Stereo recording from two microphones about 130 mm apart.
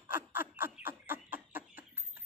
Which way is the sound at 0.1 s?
15° right (ahead or behind).